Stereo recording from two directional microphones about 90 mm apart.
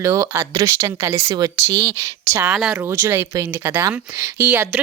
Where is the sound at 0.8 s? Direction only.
30° right (ahead or behind).